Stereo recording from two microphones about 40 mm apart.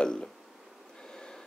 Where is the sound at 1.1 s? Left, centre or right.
Left.